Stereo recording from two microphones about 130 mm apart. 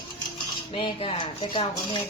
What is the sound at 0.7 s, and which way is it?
Speech, 45° left (ahead or behind).